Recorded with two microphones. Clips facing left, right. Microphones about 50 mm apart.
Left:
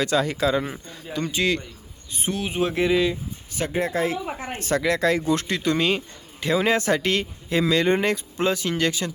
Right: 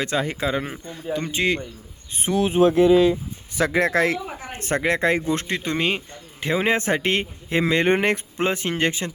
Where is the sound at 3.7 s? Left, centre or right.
Right.